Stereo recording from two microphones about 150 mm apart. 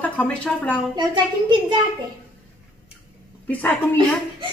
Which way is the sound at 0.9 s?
30° right (ahead or behind).